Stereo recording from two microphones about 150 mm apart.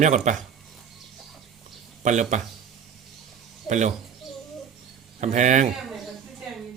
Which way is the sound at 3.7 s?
50° right (ahead or behind).